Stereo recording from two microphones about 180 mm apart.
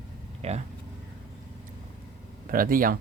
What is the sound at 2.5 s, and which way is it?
Speech, 50° right (ahead or behind).